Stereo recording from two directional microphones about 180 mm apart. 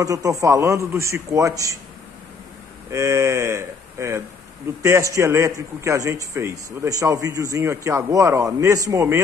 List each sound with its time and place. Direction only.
0.0 s a man's voice: 20° right (ahead or behind)
2.9 s a man's voice: 15° right (ahead or behind)